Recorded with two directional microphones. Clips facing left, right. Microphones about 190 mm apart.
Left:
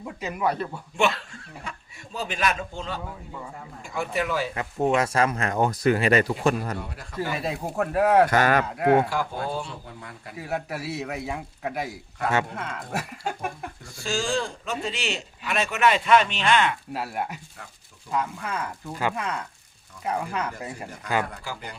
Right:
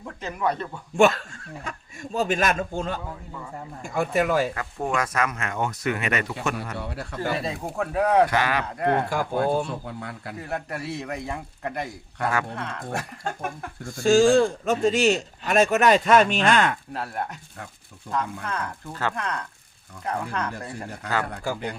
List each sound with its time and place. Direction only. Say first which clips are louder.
0.0 s speech: even; 5° left (ahead or behind)
0.9 s a man's voice: right 6 dB; 45° right (ahead or behind)
4.5 s speech: left 4 dB; 25° left (ahead or behind)
7.4 s a man's voice: left 1 dB; 5° left (ahead or behind)
8.3 s speech: left 3 dB; 45° left (ahead or behind)
8.6 s a man's voice: left 4 dB; 5° left (ahead or behind)
9.0 s a man's voice: right 5 dB; 50° right (ahead or behind)
9.8 s a man's voice: right 6 dB; 70° right (ahead or behind)
10.3 s a man's voice: left 2 dB; 5° left (ahead or behind)
13.8 s a man's voice: right 12 dB; 50° right (ahead or behind)
16.9 s speech: left 1 dB; 10° left (ahead or behind)